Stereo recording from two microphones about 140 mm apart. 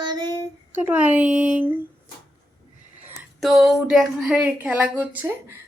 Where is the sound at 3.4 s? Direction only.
Centre (ahead or behind).